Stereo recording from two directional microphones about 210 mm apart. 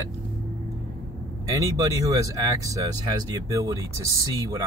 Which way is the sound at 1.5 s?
15° right (ahead or behind).